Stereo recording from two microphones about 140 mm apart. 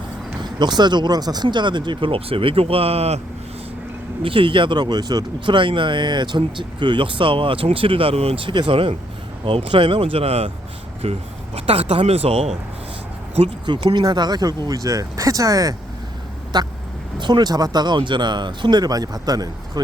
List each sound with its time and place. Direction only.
0.4 s speech: 30° right (ahead or behind); by 3.2 s 45° right (ahead or behind)
4.2 s speech: 40° right (ahead or behind)
13.9 s speech: 30° right (ahead or behind)